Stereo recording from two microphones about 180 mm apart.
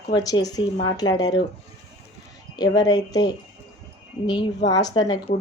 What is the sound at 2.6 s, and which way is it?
Speech, 20° left (ahead or behind).